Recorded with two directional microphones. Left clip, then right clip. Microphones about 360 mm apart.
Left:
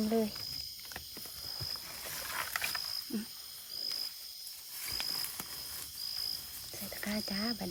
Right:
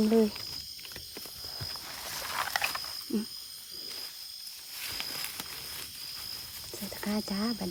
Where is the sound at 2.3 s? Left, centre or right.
Centre.